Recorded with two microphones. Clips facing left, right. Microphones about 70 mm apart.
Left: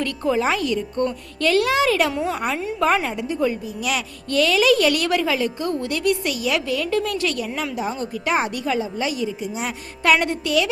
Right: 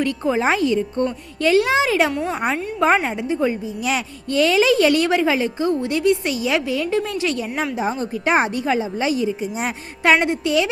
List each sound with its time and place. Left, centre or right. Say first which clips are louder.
0.0 s a woman's voice: right 2 dB; right
10.0 s a woman's voice: right 2 dB; right